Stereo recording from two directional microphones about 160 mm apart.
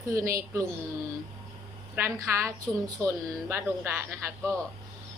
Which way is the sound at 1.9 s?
15° right (ahead or behind).